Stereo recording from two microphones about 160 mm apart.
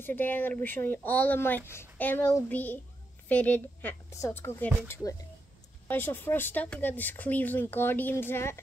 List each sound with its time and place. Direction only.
0.0 s speech: 10° left (ahead or behind)